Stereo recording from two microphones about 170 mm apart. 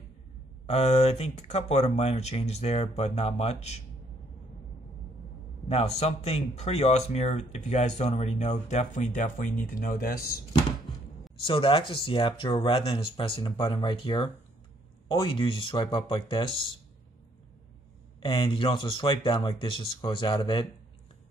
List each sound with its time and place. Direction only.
0.7 s speech: 40° left (ahead or behind)
5.7 s speech: 40° left (ahead or behind); by 10.4 s 60° left (ahead or behind)
11.4 s speech: 30° left (ahead or behind)
18.2 s speech: 30° left (ahead or behind)